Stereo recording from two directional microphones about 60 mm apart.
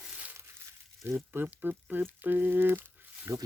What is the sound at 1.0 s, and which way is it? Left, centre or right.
Speech, right.